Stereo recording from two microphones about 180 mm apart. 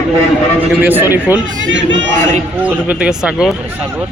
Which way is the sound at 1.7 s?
90° right.